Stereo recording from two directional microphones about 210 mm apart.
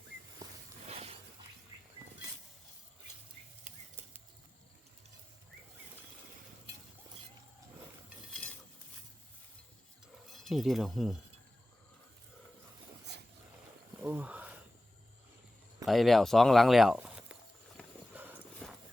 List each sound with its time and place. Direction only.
0.9 s a sound: 30° right (ahead or behind)
8.3 s cutlery: 5° left (ahead or behind)
10.2 s speech: centre (ahead or behind)
14.0 s a sound: 10° right (ahead or behind)
15.9 s speech: centre (ahead or behind)
18.1 s horse: 10° right (ahead or behind)